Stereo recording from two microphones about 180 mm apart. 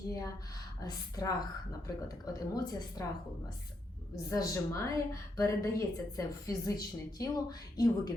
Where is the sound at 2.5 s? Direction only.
20° left (ahead or behind).